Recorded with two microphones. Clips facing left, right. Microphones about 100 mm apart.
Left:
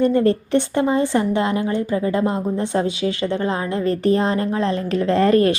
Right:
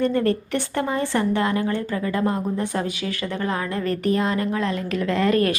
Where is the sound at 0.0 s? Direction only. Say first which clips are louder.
Left 4 dB; 20° left (ahead or behind).